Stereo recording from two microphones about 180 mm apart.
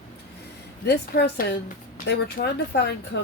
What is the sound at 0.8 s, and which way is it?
A woman's voice, 65° left (ahead or behind).